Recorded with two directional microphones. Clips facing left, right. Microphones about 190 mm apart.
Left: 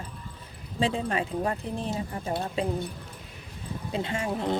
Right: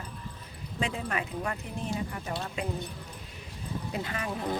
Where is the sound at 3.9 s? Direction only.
25° left (ahead or behind).